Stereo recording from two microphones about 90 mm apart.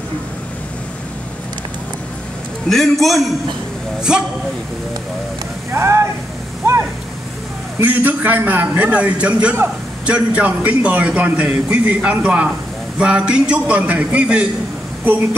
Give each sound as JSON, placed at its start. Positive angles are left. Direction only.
{"t": 2.7, "sound": "a man's voice", "side_deg": 0}
{"t": 5.7, "sound": "a man's voice", "side_deg": -30}
{"t": 6.6, "sound": "a sound", "side_deg": -30}
{"t": 7.8, "sound": "a man's voice", "side_deg": -20}